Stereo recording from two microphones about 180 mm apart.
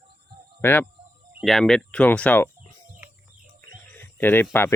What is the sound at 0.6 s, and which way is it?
Speech, 10° left (ahead or behind).